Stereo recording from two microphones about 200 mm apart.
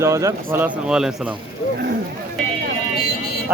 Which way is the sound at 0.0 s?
15° right (ahead or behind).